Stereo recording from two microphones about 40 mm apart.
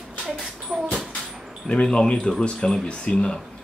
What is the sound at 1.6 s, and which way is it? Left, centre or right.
Speech, left.